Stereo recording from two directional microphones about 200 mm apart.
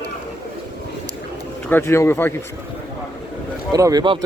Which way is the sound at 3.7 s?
20° right (ahead or behind).